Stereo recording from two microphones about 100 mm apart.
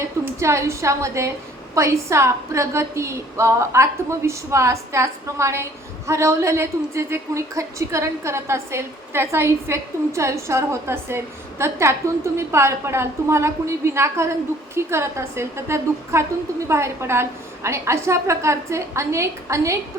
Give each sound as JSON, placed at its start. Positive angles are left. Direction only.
{"t": 0.3, "sound": "a woman's voice", "side_deg": -30}